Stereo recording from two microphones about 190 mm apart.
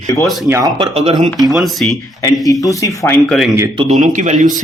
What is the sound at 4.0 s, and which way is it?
Speech, 40° right (ahead or behind).